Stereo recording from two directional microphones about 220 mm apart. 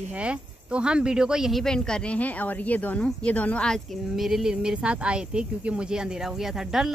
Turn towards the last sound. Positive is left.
turn(degrees=0)  # may be behind; listen again after turning